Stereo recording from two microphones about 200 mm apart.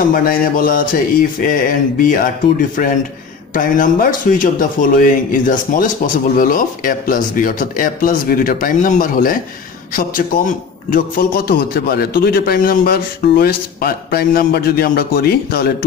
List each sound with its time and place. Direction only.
0.1 s a man's voice: 45° left (ahead or behind)